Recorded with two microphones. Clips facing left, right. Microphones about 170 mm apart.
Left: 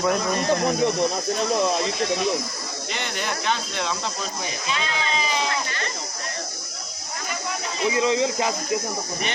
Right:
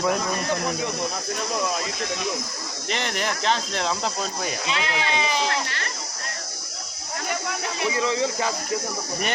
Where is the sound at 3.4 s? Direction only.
35° right (ahead or behind).